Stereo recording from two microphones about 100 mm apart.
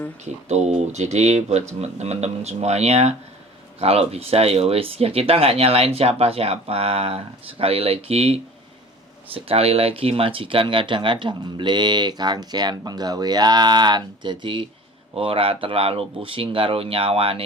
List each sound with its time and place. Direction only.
1.2 s speech: 90° right
9.3 s speech: 75° right (ahead or behind); by 14.7 s 55° right (ahead or behind)
15.1 s speech: 70° right (ahead or behind)